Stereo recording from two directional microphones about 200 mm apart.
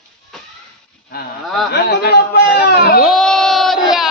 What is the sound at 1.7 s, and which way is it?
Speech, 55° left (ahead or behind).